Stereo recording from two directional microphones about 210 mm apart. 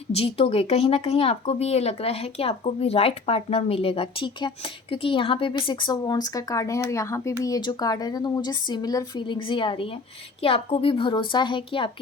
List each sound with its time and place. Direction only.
0.1 s speech: 30° left (ahead or behind)